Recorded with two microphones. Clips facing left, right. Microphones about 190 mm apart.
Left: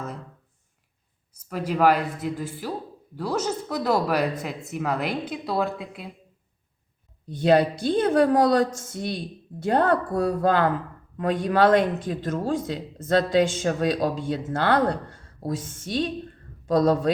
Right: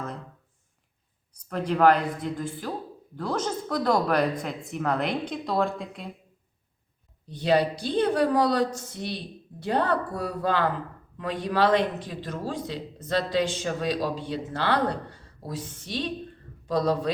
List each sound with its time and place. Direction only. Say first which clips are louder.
1.3 s speech: even; 5° left (ahead or behind)
7.3 s a man's voice: left 4 dB; 50° left (ahead or behind)